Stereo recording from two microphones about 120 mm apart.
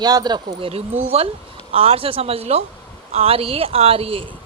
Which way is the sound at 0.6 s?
55° right (ahead or behind).